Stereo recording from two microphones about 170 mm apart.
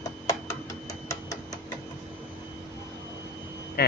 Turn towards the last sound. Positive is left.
turn(degrees=70)  # may be behind; listen again after turning